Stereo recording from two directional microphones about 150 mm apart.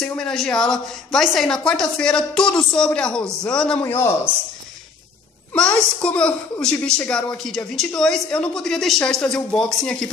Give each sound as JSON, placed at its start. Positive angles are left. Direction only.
{"t": 0.0, "sound": "a woman's voice", "side_deg": 5}
{"t": 5.5, "sound": "a woman's voice", "side_deg": 5}